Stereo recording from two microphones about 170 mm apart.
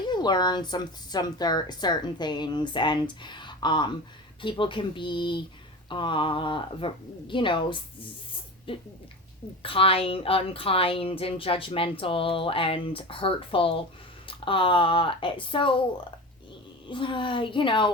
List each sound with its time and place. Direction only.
0.0 s a woman's voice: 25° left (ahead or behind)
16.9 s speech: 30° left (ahead or behind)